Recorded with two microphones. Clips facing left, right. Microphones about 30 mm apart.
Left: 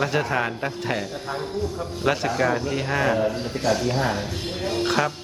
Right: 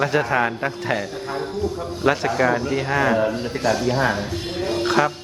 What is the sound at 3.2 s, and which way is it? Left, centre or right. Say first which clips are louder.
A man's voice: right 3 dB; centre.